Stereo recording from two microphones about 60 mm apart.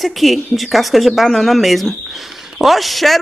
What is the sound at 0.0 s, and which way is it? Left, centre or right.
Speech, centre.